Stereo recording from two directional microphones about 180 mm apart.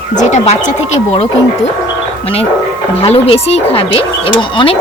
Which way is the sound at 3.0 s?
35° left (ahead or behind).